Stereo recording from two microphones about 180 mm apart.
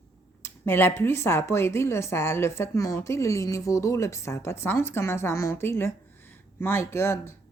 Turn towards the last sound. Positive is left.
turn(degrees=15)  # may be behind; listen again after turning